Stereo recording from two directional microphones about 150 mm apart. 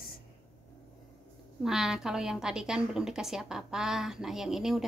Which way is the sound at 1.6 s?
5° right (ahead or behind).